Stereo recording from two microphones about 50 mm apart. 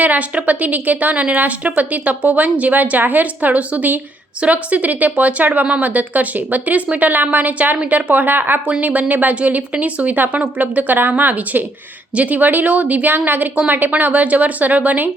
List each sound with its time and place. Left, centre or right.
0.0 s a woman's voice: right